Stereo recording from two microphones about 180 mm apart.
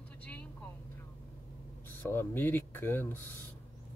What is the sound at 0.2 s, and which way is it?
Vehicle, 10° left (ahead or behind).